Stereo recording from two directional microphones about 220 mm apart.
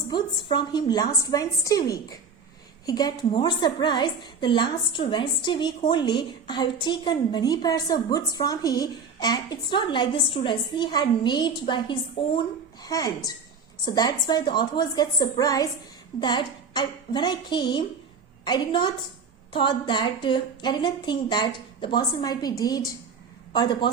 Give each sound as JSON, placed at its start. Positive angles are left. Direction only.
{"t": 0.1, "sound": "a woman's voice", "side_deg": 20}